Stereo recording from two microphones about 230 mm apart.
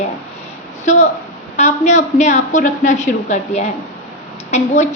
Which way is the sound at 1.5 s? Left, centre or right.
Left.